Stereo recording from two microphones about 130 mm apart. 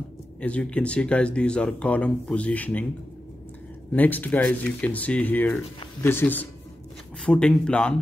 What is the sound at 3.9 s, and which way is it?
Speech, 15° left (ahead or behind).